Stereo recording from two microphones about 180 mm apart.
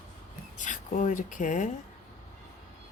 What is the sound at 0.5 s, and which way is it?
Speech, 45° left (ahead or behind).